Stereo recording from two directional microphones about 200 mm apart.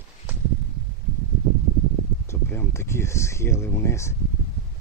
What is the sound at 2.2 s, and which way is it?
Speech, 10° left (ahead or behind).